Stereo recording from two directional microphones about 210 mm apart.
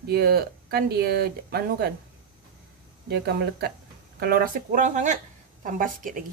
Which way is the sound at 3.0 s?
50° right (ahead or behind).